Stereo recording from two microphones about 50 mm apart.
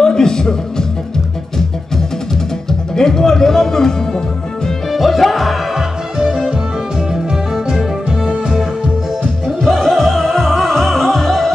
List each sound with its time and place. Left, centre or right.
0.0 s music: centre
2.9 s speech: centre
4.6 s music: centre
5.8 s music: centre
9.5 s music: centre